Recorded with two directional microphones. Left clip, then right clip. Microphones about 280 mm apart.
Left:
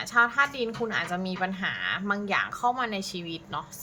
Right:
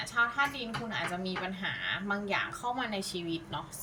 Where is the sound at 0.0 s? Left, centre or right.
Centre.